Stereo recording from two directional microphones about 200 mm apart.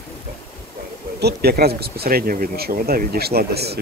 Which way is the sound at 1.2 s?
55° right (ahead or behind).